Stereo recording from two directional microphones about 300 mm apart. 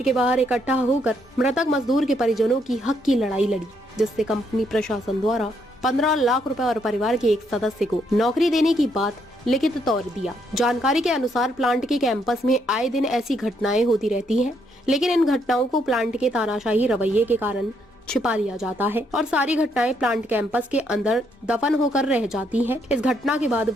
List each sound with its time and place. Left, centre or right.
0.0 s a woman's voice: centre